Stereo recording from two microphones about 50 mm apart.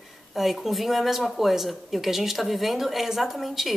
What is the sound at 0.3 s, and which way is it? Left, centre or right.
Speech, centre.